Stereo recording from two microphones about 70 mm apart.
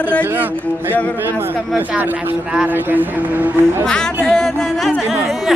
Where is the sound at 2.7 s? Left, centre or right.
Right.